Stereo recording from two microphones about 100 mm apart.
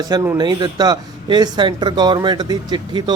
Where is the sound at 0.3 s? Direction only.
45° right (ahead or behind).